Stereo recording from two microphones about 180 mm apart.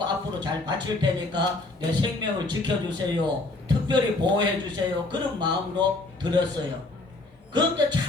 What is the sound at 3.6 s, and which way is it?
A man's voice, 25° right (ahead or behind).